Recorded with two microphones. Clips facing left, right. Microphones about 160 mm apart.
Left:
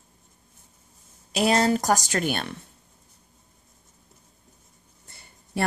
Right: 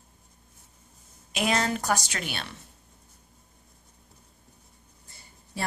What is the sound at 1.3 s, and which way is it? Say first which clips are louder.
A woman's voice: left 6 dB; 35° left (ahead or behind).